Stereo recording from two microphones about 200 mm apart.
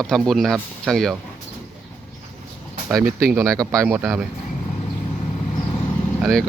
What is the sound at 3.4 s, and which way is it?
Speech, 15° right (ahead or behind).